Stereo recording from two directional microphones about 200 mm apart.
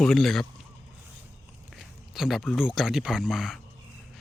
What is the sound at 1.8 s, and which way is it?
Speech, centre (ahead or behind).